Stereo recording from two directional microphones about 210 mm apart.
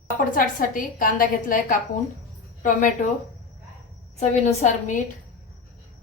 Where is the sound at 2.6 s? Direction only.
40° left (ahead or behind).